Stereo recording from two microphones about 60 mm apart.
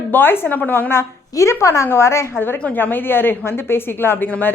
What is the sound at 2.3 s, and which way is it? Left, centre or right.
A woman's voice, left.